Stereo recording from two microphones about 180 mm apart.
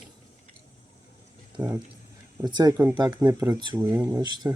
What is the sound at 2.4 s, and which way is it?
Speech, 20° right (ahead or behind).